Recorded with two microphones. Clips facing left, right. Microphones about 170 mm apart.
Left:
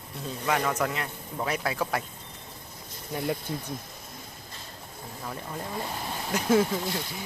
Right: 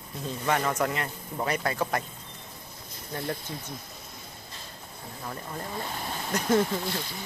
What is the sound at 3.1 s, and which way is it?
Speech, 10° left (ahead or behind).